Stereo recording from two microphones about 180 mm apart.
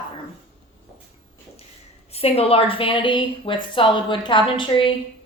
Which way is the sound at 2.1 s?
35° left (ahead or behind).